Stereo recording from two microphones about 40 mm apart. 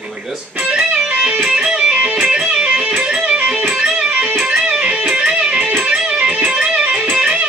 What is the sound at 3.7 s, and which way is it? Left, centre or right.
Music, centre.